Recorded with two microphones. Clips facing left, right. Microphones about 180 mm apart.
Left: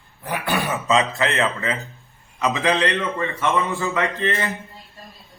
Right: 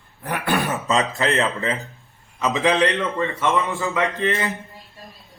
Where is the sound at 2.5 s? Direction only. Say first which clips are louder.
Right 3 dB; 25° right (ahead or behind).